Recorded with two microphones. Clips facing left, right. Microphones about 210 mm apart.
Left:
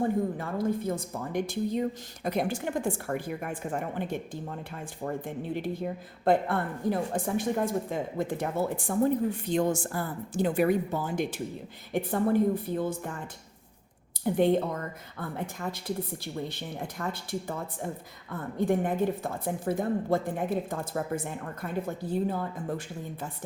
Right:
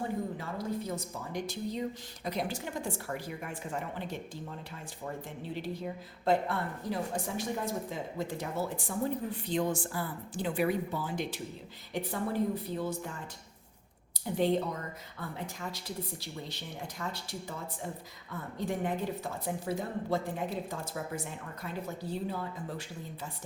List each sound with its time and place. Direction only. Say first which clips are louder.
0.3 s speech: left 6 dB; 55° left (ahead or behind)
14.3 s speech: left 5 dB; 55° left (ahead or behind)